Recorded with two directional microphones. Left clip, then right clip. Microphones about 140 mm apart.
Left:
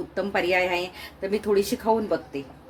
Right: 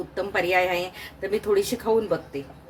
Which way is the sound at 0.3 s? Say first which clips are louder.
Right 1 dB; 35° left (ahead or behind).